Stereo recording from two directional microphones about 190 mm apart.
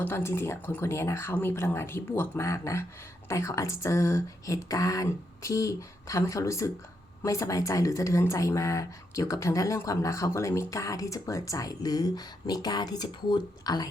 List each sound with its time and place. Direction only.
0.0 s speech: 10° left (ahead or behind)